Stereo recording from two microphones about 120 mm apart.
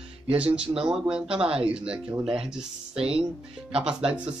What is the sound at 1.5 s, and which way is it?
Speech, 50° right (ahead or behind).